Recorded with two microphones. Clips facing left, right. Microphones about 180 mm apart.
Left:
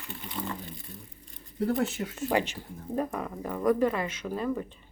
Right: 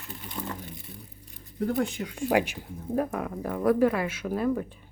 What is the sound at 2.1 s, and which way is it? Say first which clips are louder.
A woman's voice: right 3 dB; 10° right (ahead or behind).